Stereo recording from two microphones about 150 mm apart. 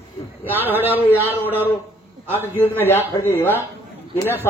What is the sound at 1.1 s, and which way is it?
Speech, 15° left (ahead or behind).